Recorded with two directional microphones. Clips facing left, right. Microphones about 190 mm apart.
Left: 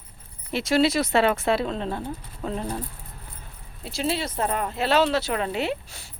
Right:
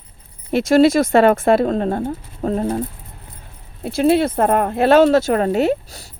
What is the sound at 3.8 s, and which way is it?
Speech, 55° right (ahead or behind).